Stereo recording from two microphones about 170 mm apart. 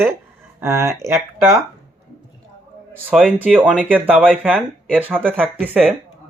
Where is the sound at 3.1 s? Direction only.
5° right (ahead or behind).